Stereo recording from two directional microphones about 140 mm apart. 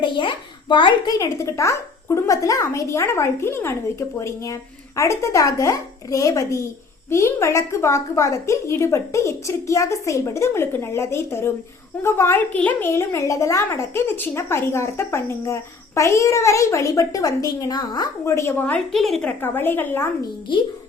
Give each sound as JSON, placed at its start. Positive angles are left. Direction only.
{"t": 0.0, "sound": "a child's voice", "side_deg": 35}
{"t": 19.4, "sound": "a woman's voice", "side_deg": 15}